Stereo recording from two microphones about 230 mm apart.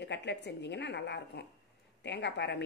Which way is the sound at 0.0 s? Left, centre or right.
Left.